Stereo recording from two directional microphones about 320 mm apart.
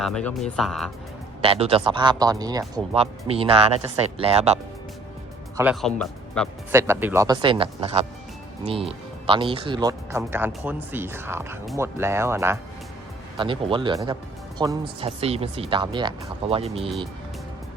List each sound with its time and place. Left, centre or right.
0.0 s speech: centre
1.4 s speech: centre
5.5 s speech: centre